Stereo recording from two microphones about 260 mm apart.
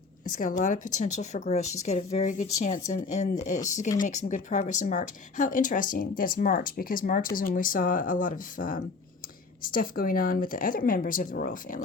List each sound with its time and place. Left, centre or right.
0.3 s speech: left